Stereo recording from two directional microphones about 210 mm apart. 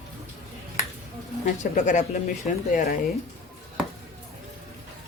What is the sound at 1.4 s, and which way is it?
Speech, 35° left (ahead or behind).